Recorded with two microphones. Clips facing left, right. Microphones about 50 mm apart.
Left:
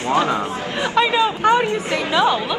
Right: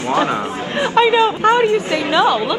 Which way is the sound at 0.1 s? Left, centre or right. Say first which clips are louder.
Right 1 dB; right.